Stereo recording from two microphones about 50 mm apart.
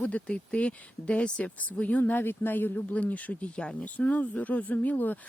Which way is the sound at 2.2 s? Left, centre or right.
Left.